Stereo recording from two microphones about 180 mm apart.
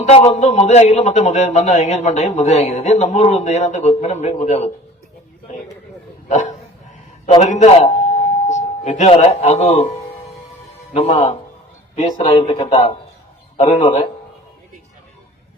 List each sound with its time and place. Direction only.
0.0 s a man's voice: 35° left (ahead or behind)
6.2 s a man's voice: 40° left (ahead or behind)
10.9 s a man's voice: 35° left (ahead or behind)
11.9 s a man's voice: 45° left (ahead or behind)
12.2 s a man's voice: 35° left (ahead or behind)